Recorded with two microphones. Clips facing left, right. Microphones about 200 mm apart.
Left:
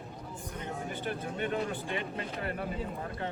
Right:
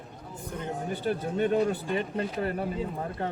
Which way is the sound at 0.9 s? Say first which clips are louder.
Right 10 dB; 40° right (ahead or behind).